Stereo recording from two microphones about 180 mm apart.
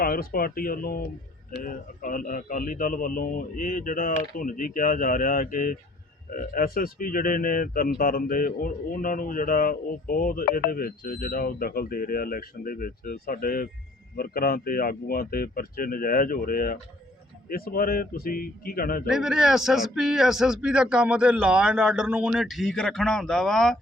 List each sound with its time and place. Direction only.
0.0 s speech: 55° left (ahead or behind)
19.0 s speech: centre (ahead or behind)